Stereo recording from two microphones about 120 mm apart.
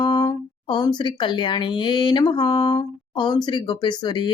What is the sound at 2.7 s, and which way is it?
Speech, 35° left (ahead or behind).